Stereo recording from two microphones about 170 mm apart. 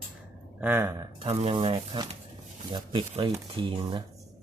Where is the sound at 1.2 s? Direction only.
35° right (ahead or behind).